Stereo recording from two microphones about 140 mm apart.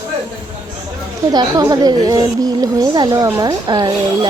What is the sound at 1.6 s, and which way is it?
A woman's voice, 30° right (ahead or behind).